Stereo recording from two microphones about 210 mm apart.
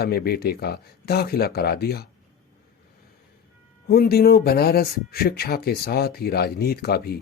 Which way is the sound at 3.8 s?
45° left (ahead or behind).